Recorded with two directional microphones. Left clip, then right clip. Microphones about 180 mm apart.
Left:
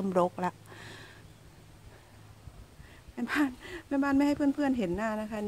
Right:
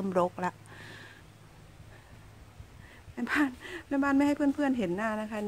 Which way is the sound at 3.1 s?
10° left (ahead or behind).